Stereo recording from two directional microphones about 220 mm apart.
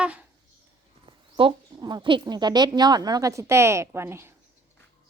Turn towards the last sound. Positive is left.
turn(degrees=-10)  # may be behind; listen again after turning